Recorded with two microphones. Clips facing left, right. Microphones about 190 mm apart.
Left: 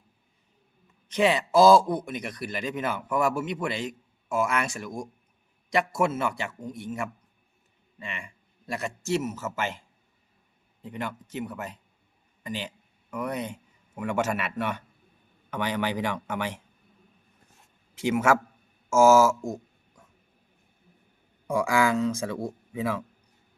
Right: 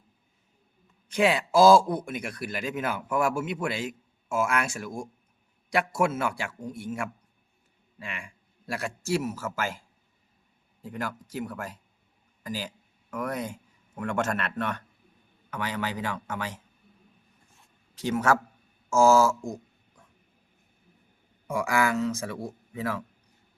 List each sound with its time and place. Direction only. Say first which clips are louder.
1.1 s a man's voice: left 1 dB; 5° right (ahead or behind)
6.1 s a man's voice: left 1 dB; 5° right (ahead or behind)
10.8 s a man's voice: even; 5° right (ahead or behind); by 16.6 s 15° left (ahead or behind)
18.0 s speech: left 2 dB; 10° left (ahead or behind)
19.4 s speech: left 2 dB; 25° left (ahead or behind)
21.4 s speech: left 2 dB; 15° left (ahead or behind)